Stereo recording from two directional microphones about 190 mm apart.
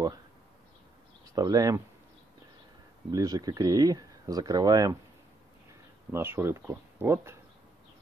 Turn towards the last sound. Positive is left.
turn(degrees=-15)  # may be behind; listen again after turning